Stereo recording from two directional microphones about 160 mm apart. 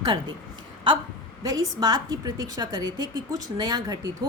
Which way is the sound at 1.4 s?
25° right (ahead or behind).